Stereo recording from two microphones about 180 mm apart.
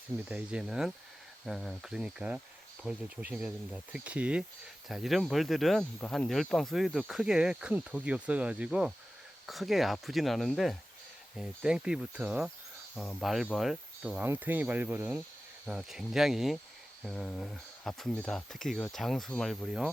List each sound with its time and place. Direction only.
0.3 s speech: 5° right (ahead or behind)